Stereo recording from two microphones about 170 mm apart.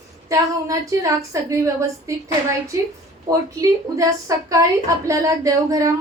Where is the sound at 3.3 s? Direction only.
20° right (ahead or behind).